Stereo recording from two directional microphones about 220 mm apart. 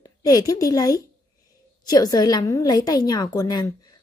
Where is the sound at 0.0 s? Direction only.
15° left (ahead or behind).